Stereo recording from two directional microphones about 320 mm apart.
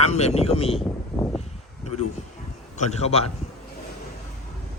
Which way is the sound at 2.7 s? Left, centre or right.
Centre.